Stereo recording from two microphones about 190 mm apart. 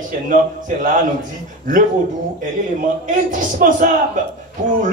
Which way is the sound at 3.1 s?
45° right (ahead or behind).